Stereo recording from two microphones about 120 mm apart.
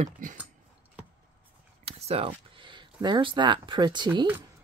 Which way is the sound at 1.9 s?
55° right (ahead or behind).